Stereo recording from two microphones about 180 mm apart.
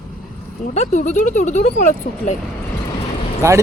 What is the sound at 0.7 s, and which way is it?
Speech, 40° left (ahead or behind).